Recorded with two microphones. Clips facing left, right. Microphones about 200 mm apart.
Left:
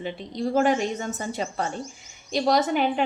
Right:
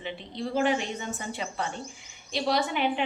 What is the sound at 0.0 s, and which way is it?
A woman's voice, 40° left (ahead or behind).